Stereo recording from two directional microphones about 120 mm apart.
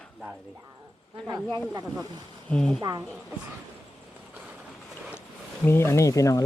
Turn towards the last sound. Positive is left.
turn(degrees=30)  # may be behind; listen again after turning